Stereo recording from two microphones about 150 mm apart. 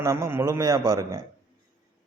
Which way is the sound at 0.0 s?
20° right (ahead or behind).